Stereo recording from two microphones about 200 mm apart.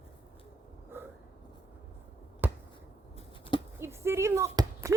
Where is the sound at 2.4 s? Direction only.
10° right (ahead or behind).